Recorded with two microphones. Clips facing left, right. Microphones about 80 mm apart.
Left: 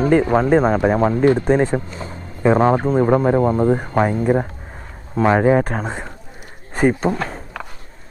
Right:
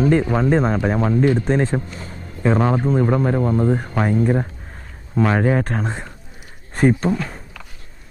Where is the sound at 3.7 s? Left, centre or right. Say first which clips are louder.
Left 3 dB; centre.